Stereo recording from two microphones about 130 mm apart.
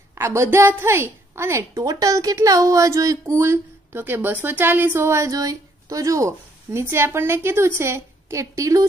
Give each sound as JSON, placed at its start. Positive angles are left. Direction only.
{"t": 0.1, "sound": "a woman's voice", "side_deg": -20}